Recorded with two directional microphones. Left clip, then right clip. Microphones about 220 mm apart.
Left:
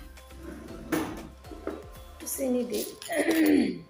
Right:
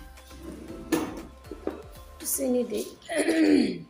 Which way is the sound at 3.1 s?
5° right (ahead or behind).